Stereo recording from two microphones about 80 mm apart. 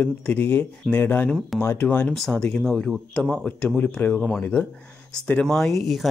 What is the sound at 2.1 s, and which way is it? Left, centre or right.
Speech, centre.